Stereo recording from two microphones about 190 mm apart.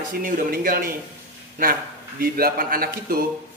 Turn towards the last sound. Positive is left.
turn(degrees=-50)  # may be behind; listen again after turning